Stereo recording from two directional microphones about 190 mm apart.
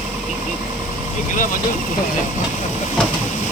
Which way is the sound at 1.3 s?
45° left (ahead or behind).